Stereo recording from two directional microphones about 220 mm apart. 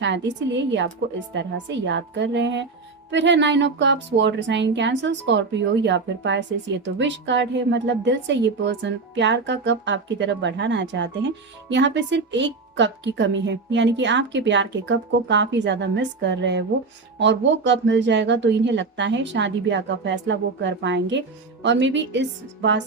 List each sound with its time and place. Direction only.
0.0 s a woman's voice: 55° right (ahead or behind)